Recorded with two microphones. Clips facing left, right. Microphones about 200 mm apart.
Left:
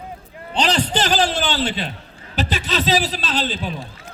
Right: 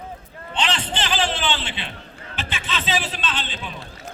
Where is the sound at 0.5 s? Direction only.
40° left (ahead or behind).